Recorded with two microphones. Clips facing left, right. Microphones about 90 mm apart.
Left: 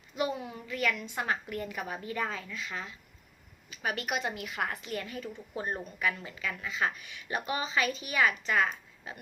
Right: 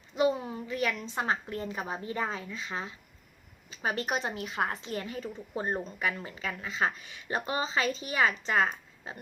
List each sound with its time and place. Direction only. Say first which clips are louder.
0.2 s a woman's voice: right 5 dB; 30° right (ahead or behind)